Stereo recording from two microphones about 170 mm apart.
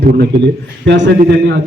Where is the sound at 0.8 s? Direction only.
90° right.